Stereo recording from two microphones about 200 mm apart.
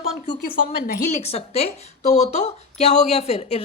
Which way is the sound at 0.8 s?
45° left (ahead or behind).